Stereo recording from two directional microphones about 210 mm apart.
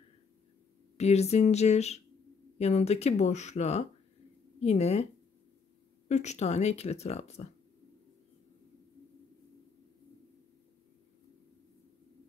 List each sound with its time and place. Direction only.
0.9 s speech: 30° left (ahead or behind)
6.0 s speech: 35° left (ahead or behind)